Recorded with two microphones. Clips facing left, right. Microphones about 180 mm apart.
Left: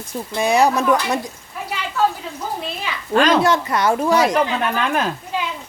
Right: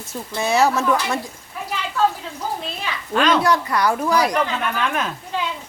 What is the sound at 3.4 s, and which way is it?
Speech, 25° left (ahead or behind).